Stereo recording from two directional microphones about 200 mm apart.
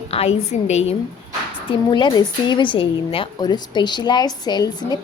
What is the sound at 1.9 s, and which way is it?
A woman's voice, 20° left (ahead or behind).